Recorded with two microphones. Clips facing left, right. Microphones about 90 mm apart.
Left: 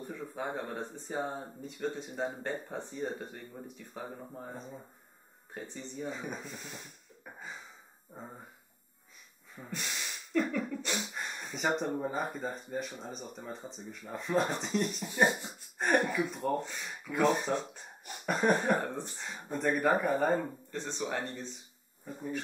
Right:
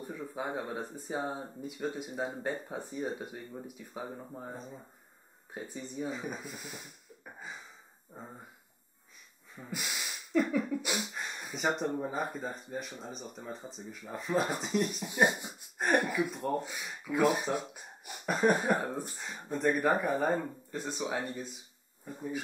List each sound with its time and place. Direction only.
0.0 s speech: 5° right (ahead or behind)
9.7 s breathing: 10° right (ahead or behind)
12.0 s speech: centre (ahead or behind)
15.0 s speech: 15° right (ahead or behind)
15.8 s speech: centre (ahead or behind)